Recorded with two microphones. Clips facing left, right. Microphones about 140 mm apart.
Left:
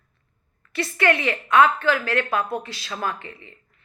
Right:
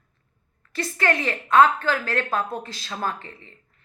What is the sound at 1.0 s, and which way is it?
Speech, 35° right (ahead or behind).